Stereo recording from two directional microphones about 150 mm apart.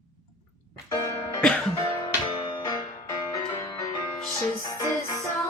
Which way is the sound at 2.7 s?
25° left (ahead or behind).